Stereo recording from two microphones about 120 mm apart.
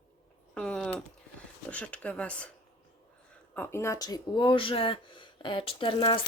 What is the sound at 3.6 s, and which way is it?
Speech, 20° left (ahead or behind).